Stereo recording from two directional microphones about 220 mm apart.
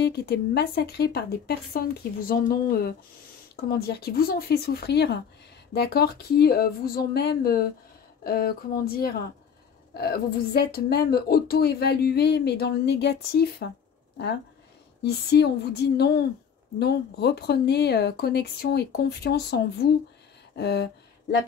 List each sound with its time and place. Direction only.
0.0 s speech: 45° left (ahead or behind)
15.0 s speech: 50° left (ahead or behind)